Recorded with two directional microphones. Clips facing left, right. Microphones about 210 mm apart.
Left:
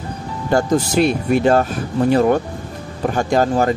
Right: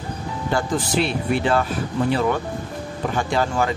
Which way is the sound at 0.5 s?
45° left (ahead or behind).